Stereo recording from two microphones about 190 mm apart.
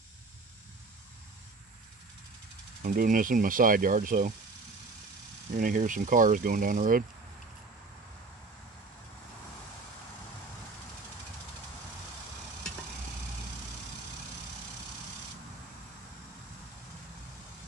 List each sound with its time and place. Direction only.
2.8 s speech: 45° right (ahead or behind)
5.6 s speech: 45° right (ahead or behind)